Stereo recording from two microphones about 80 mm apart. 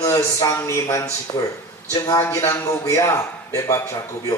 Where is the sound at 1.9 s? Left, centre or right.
Left.